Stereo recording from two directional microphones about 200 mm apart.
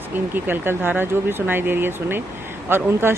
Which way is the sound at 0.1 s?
10° right (ahead or behind).